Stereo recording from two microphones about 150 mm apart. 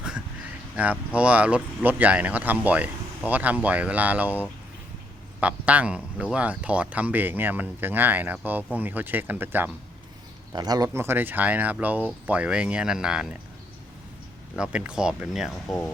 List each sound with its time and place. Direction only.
0.8 s speech: 10° right (ahead or behind)
10.5 s speech: 25° right (ahead or behind)
10.8 s speech: 15° right (ahead or behind)
14.5 s speech: 5° right (ahead or behind)